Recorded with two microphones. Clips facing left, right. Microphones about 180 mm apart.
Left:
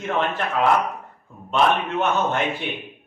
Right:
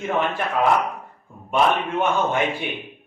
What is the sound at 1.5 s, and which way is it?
Speech, 10° right (ahead or behind).